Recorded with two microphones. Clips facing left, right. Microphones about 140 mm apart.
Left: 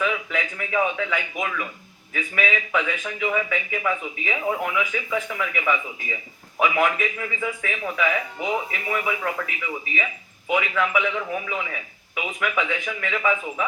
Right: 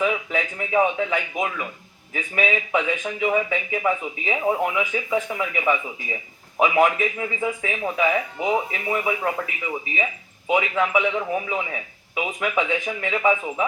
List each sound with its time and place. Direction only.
0.0 s speech: 30° right (ahead or behind)